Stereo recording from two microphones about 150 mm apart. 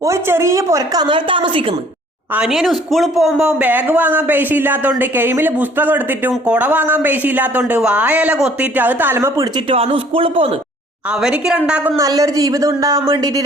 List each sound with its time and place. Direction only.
0.0 s a woman's voice: 20° right (ahead or behind); by 1.6 s 35° right (ahead or behind)
2.3 s speech: 5° right (ahead or behind)
9.6 s speech: 40° right (ahead or behind)
11.1 s speech: 5° right (ahead or behind)
11.9 s a woman's voice: 25° right (ahead or behind)